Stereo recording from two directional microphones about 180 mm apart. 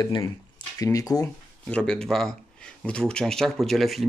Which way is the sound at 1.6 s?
5° left (ahead or behind).